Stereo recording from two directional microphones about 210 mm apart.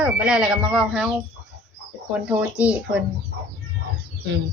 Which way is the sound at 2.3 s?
5° right (ahead or behind).